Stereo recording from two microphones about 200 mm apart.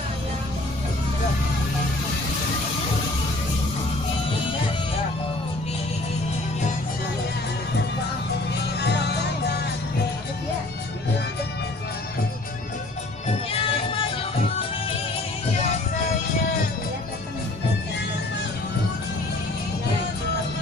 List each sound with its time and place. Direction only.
8.8 s music: 55° left (ahead or behind)
13.2 s music: 30° left (ahead or behind)